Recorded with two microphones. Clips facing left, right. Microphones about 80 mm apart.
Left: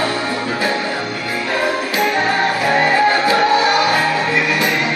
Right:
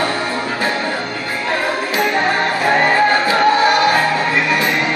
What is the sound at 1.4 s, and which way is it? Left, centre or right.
Music, right.